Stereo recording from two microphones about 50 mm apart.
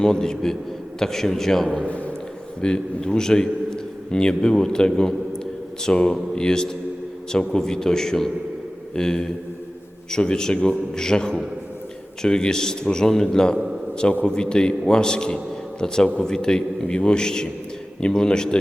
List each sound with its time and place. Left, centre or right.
0.0 s a man's voice: centre
1.9 s speech: left
2.6 s a man's voice: centre